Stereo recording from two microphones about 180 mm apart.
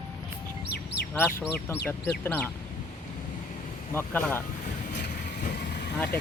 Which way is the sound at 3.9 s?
10° left (ahead or behind).